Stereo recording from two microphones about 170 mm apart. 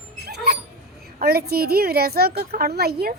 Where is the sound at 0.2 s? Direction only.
70° right (ahead or behind).